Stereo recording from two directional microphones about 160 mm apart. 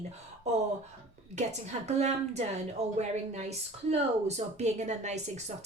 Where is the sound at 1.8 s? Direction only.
45° right (ahead or behind).